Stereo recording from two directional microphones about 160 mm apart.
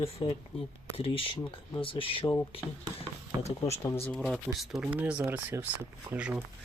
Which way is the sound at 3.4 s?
40° left (ahead or behind).